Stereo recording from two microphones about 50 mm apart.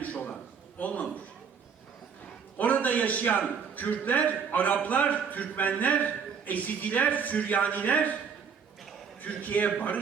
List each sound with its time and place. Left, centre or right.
0.0 s a sound: left
0.8 s a man's voice: left
2.6 s a man's voice: left
9.2 s a man's voice: left